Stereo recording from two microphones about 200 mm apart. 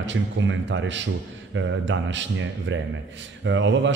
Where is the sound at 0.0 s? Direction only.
65° right (ahead or behind).